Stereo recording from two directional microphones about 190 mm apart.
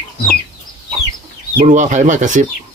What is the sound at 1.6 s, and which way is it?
Speech, 35° right (ahead or behind).